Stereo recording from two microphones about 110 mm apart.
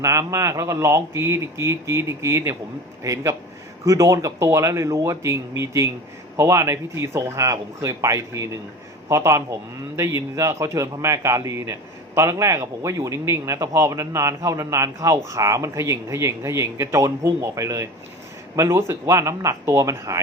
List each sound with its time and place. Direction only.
0.0 s a man's voice: 30° right (ahead or behind)